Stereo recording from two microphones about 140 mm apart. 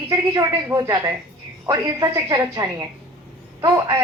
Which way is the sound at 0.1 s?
25° right (ahead or behind).